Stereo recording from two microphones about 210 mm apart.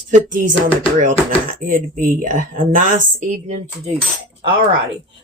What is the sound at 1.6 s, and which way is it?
Speech, 40° right (ahead or behind).